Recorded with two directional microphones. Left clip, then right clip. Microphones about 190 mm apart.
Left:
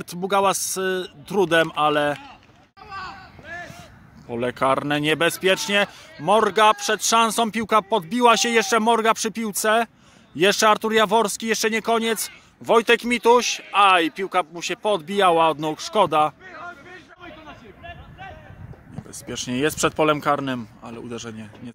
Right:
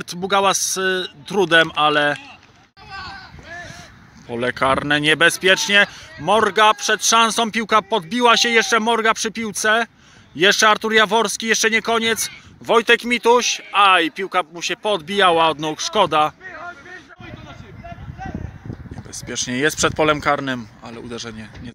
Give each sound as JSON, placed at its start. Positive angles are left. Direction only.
{"t": 0.0, "sound": "speech", "side_deg": 0}
{"t": 4.3, "sound": "speech", "side_deg": 0}
{"t": 16.4, "sound": "a sound", "side_deg": -40}
{"t": 19.1, "sound": "speech", "side_deg": 5}